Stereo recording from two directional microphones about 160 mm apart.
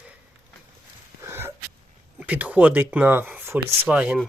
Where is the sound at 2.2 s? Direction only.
10° right (ahead or behind).